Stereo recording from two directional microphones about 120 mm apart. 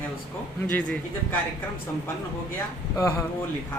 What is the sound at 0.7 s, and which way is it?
Speech, 15° left (ahead or behind).